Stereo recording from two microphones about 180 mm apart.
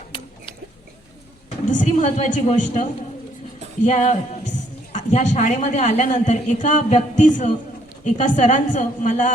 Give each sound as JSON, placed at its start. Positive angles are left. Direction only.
{"t": 1.5, "sound": "speech", "side_deg": 45}
{"t": 3.8, "sound": "a man's voice", "side_deg": 40}